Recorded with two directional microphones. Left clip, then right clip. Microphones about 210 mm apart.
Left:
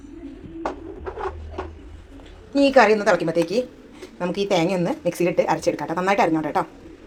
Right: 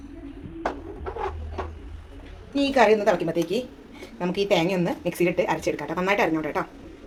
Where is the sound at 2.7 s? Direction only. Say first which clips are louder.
Left 2 dB; 15° left (ahead or behind).